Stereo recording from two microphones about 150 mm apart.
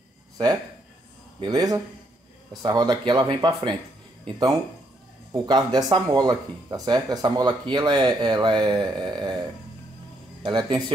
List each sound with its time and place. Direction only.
1.4 s speech: 25° right (ahead or behind)
5.3 s speech: 25° right (ahead or behind)
10.4 s a man's voice: 30° right (ahead or behind)